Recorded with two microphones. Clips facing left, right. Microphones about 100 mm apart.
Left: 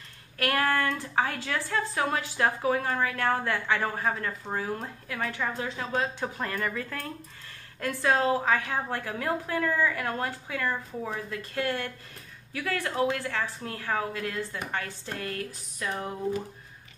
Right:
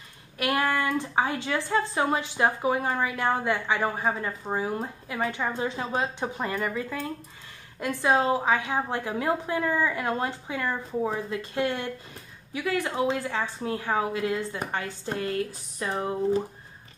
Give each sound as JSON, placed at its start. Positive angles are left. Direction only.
{"t": 0.4, "sound": "a woman's voice", "side_deg": -15}